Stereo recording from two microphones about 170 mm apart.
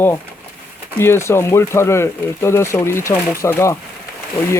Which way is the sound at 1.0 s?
15° left (ahead or behind).